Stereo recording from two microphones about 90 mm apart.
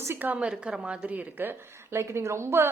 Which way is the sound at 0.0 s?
25° right (ahead or behind).